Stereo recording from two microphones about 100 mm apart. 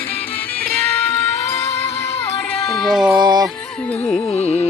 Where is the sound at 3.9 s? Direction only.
15° left (ahead or behind).